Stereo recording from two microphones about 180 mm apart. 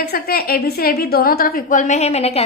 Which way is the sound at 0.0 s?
55° left (ahead or behind).